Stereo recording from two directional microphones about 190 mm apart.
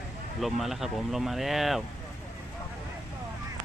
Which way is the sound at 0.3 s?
Centre (ahead or behind).